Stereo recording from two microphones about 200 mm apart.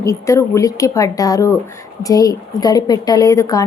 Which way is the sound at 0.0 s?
15° left (ahead or behind).